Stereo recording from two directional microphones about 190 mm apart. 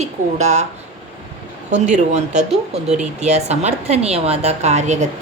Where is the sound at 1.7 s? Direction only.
40° right (ahead or behind).